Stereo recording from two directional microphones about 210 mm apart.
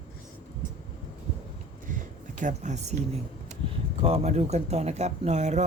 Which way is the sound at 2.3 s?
35° right (ahead or behind).